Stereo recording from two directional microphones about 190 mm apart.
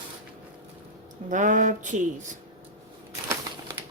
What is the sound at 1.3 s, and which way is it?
Speech, 40° right (ahead or behind).